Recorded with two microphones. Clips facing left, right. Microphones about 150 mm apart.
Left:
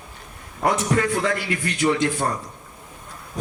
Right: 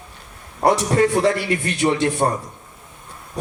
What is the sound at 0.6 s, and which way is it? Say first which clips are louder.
A man's voice: right 4 dB; 30° right (ahead or behind).